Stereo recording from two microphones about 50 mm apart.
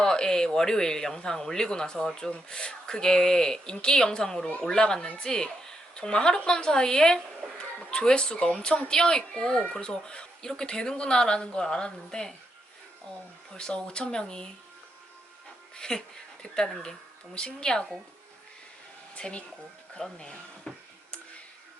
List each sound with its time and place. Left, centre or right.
0.0 s speech: centre
13.5 s speech: centre
15.7 s speech: centre
19.1 s speech: left
20.7 s a sound: centre